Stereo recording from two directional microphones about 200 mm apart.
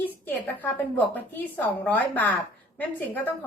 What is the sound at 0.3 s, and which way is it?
A woman's voice, 10° left (ahead or behind).